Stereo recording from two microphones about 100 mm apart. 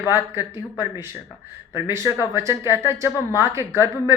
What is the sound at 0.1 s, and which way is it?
A woman's voice, 25° right (ahead or behind).